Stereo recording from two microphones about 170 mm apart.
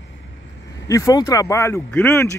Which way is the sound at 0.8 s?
20° left (ahead or behind).